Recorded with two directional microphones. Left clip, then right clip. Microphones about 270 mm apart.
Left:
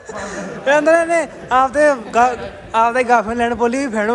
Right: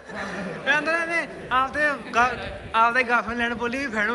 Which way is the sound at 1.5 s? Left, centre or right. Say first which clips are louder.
Left 9 dB; centre.